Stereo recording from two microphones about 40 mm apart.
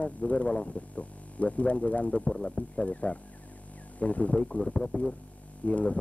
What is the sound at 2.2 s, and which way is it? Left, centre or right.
Speech, left.